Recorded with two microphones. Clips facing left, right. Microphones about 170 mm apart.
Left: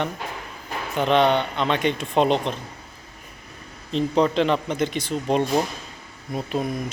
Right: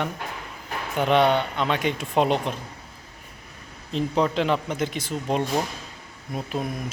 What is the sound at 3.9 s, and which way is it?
Speech, 5° right (ahead or behind).